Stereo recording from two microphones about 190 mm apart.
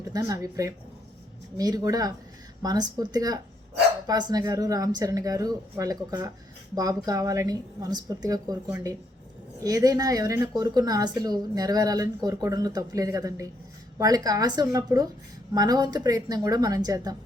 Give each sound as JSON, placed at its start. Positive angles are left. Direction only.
{"t": 0.0, "sound": "a woman's voice", "side_deg": -20}
{"t": 9.6, "sound": "speech", "side_deg": -20}